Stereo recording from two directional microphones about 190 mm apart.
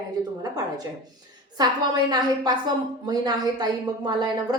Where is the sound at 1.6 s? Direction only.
20° right (ahead or behind).